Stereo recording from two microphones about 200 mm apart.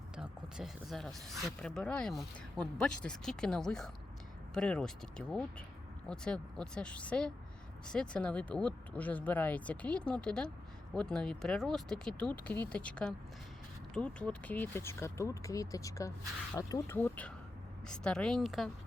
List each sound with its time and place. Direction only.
0.2 s speech: 5° right (ahead or behind)